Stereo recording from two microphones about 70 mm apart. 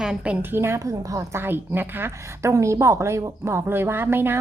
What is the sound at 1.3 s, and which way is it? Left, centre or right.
A woman's voice, right.